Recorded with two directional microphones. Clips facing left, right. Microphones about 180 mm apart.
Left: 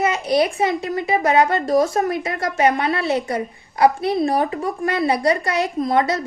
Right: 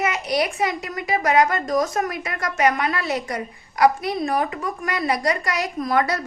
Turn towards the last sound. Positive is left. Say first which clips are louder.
# left 3 dB
turn(degrees=25)  # may be behind; listen again after turning